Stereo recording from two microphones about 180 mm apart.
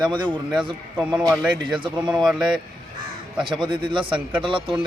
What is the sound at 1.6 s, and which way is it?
Speech, 25° right (ahead or behind).